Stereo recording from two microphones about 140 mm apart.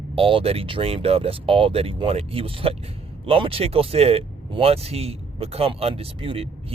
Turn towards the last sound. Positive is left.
turn(degrees=-45)  # may be behind; listen again after turning